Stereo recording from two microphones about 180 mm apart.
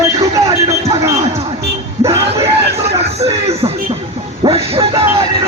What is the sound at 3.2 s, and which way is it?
Music, 35° right (ahead or behind).